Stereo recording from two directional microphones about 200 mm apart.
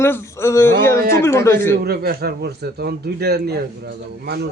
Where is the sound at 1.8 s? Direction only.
50° right (ahead or behind).